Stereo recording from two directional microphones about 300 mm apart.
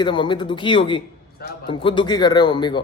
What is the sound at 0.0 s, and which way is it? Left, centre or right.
A man's voice, centre.